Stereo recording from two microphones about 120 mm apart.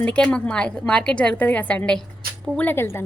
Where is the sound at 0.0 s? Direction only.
10° left (ahead or behind).